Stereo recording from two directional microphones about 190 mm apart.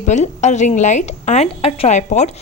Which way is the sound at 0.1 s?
40° left (ahead or behind).